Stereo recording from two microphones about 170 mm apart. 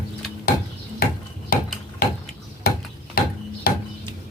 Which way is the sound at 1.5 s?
65° left (ahead or behind).